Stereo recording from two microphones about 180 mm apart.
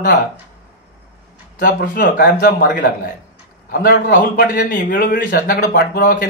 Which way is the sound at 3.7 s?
55° left (ahead or behind).